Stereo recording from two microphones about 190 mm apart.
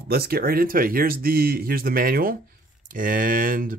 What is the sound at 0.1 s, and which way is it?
Speech, 55° right (ahead or behind).